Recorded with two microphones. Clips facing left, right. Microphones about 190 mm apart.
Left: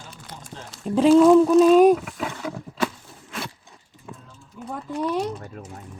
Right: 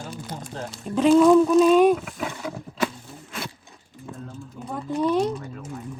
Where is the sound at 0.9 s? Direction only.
30° left (ahead or behind).